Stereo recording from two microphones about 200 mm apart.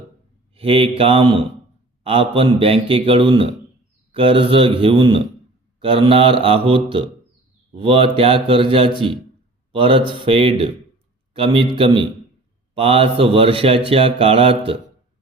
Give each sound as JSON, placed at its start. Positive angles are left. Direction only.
{"t": 0.5, "sound": "speech", "side_deg": -25}